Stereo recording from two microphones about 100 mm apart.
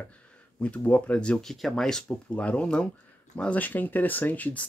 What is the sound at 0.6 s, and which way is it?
Speech, 15° left (ahead or behind).